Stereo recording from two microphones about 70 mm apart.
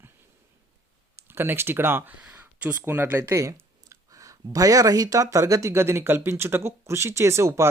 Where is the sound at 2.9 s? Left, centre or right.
Right.